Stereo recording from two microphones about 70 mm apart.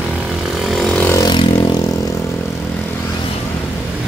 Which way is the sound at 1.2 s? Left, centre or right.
Left.